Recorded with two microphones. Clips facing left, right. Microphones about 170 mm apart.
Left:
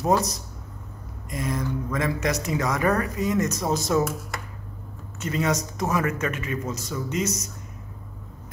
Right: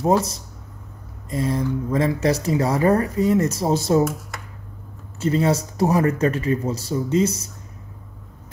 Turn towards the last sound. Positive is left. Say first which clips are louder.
# right 7 dB
turn(degrees=-30)  # may be behind; listen again after turning